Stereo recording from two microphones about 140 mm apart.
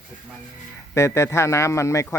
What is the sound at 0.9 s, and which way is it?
A man's voice, 20° left (ahead or behind).